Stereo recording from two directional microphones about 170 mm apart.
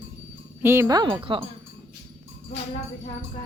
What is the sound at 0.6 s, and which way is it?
Speech, 15° right (ahead or behind).